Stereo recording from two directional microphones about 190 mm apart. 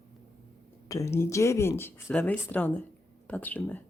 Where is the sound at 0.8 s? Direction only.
15° left (ahead or behind).